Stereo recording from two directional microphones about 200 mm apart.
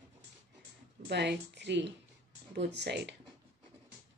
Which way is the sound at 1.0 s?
60° right (ahead or behind).